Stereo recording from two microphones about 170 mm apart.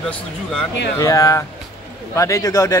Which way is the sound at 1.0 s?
20° left (ahead or behind).